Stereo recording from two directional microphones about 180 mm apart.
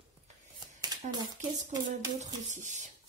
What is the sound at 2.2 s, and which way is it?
Speech, 40° right (ahead or behind).